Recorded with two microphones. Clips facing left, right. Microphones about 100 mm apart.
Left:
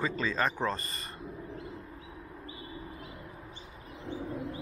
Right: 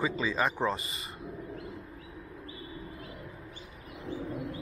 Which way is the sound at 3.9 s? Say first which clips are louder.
Right 1 dB; 30° left (ahead or behind).